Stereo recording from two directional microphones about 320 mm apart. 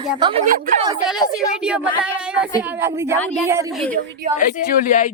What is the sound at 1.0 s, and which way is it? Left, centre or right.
A woman's voice, centre.